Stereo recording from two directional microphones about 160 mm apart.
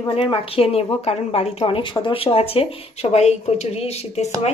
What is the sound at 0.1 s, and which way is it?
A woman's voice, 35° left (ahead or behind).